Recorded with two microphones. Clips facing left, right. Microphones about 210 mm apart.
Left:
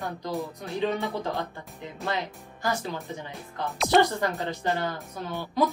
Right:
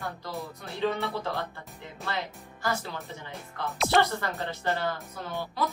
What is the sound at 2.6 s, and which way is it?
Speech, 15° left (ahead or behind).